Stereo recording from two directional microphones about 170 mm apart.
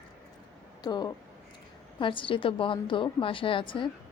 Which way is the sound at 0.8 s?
25° left (ahead or behind).